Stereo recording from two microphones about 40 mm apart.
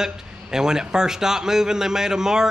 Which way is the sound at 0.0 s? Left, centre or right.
Centre.